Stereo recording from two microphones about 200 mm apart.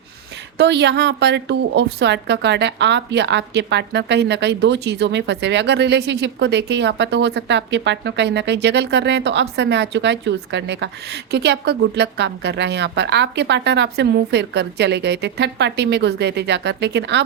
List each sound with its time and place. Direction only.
0.5 s a woman's voice: 60° right (ahead or behind)